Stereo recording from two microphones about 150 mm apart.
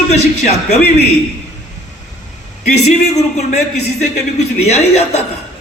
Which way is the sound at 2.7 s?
50° left (ahead or behind).